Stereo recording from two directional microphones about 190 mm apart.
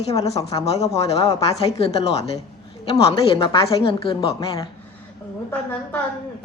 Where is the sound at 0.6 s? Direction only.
35° left (ahead or behind).